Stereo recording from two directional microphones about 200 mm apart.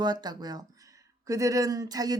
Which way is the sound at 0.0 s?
20° right (ahead or behind).